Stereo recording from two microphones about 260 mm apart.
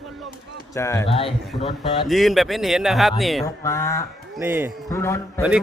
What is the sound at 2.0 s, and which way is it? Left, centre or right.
A man's voice, centre.